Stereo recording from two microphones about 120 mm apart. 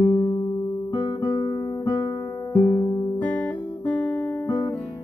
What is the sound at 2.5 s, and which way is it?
Music, 25° left (ahead or behind).